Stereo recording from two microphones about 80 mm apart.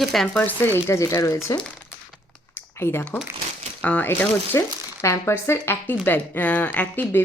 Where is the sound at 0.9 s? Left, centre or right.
Left.